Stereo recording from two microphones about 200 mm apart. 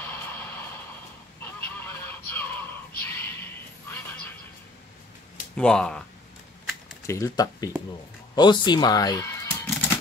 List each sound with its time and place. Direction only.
0.0 s vehicle: 10° left (ahead or behind)
1.4 s goose: 10° left (ahead or behind)
3.0 s a sound: 10° left (ahead or behind)
3.9 s neigh: 10° left (ahead or behind)
5.6 s speech: 5° left (ahead or behind)
7.1 s speech: 15° left (ahead or behind)